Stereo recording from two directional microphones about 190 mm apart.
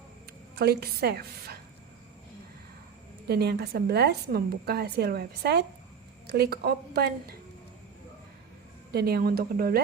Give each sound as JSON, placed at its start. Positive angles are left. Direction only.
{"t": 0.5, "sound": "a woman's voice", "side_deg": -55}
{"t": 3.2, "sound": "a woman's voice", "side_deg": -60}
{"t": 8.9, "sound": "a woman's voice", "side_deg": -55}